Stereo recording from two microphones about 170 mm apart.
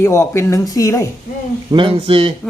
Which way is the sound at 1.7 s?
30° right (ahead or behind).